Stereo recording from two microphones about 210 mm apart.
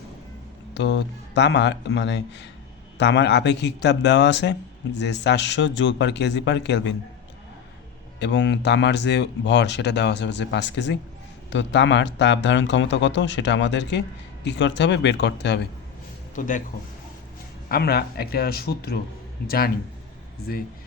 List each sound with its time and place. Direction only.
0.7 s speech: 60° left (ahead or behind)
8.2 s speech: 55° left (ahead or behind)
16.3 s speech: 40° left (ahead or behind)
17.7 s speech: 50° left (ahead or behind)